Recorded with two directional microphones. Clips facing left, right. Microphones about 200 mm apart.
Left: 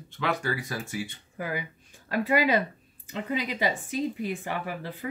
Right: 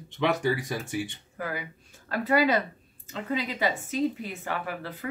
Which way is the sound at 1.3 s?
15° left (ahead or behind).